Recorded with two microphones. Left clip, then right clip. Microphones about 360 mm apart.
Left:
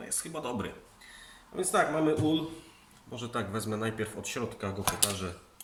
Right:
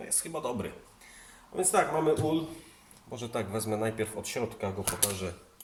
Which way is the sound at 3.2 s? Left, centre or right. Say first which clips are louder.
Right 1 dB; centre.